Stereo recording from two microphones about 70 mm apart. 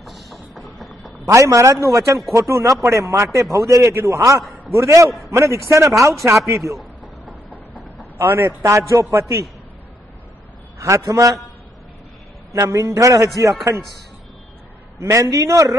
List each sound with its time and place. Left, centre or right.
0.0 s music: centre
1.2 s a man's voice: right
8.2 s a man's voice: right
10.8 s a man's voice: right
12.5 s a man's voice: right
15.0 s a man's voice: right